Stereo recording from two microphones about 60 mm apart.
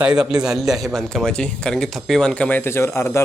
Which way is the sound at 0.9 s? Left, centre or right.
Centre.